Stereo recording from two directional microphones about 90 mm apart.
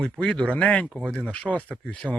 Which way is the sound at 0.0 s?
10° left (ahead or behind).